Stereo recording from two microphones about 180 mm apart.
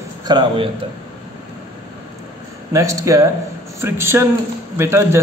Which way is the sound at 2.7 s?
20° right (ahead or behind).